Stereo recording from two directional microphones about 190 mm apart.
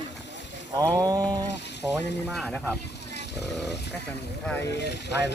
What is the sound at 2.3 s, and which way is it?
Speech, 5° left (ahead or behind).